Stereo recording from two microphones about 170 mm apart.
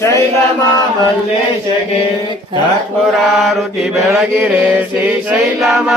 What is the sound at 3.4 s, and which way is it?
Chant, centre (ahead or behind).